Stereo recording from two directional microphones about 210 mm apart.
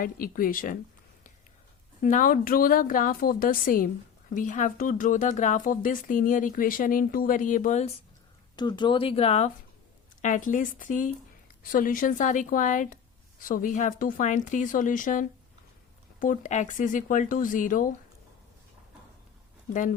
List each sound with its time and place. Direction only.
0.0 s speech: 45° left (ahead or behind)
2.0 s speech: 40° left (ahead or behind)
8.5 s speech: 20° left (ahead or behind); by 17.9 s 40° left (ahead or behind)